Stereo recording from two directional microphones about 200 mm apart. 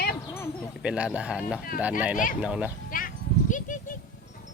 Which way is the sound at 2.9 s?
45° left (ahead or behind).